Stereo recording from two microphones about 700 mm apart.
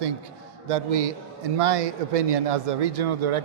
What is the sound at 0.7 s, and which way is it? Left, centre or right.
A man's voice, right.